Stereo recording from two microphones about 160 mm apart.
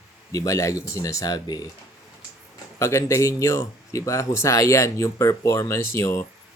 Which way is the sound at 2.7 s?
15° left (ahead or behind).